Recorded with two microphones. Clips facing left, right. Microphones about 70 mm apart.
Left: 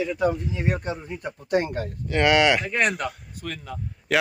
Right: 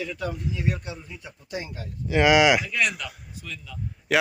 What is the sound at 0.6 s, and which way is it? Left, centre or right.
Speech, left.